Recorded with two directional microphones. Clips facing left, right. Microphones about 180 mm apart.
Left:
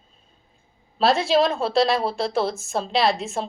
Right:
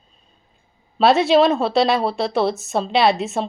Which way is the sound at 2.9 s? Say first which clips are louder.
Right 4 dB; centre (ahead or behind).